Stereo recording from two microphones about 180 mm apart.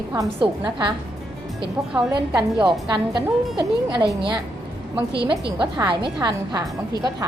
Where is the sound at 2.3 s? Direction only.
Centre (ahead or behind).